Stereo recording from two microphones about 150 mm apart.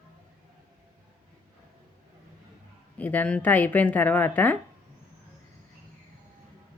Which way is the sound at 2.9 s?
10° left (ahead or behind).